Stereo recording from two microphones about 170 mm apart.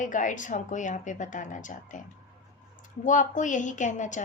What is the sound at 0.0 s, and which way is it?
A woman's voice, 50° left (ahead or behind).